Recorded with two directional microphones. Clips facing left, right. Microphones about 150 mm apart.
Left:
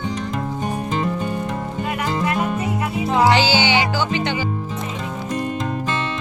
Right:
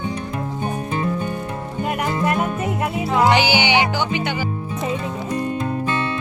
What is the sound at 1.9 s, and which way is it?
Music, 45° right (ahead or behind).